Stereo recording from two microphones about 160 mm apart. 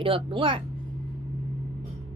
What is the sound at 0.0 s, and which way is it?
Speech, 35° right (ahead or behind).